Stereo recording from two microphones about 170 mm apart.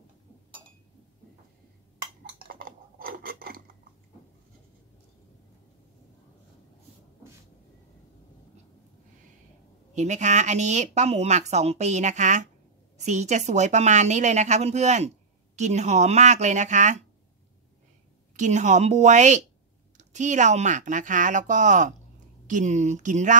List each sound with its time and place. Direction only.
2.4 s a sound: 55° right (ahead or behind)
9.9 s a woman's voice: 45° right (ahead or behind)
18.3 s a woman's voice: 45° right (ahead or behind)